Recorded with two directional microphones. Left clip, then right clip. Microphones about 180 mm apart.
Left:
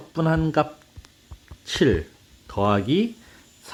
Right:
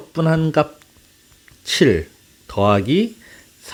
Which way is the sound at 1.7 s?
25° right (ahead or behind).